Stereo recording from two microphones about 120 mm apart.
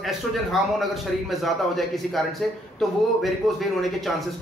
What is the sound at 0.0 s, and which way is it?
Speech, centre (ahead or behind).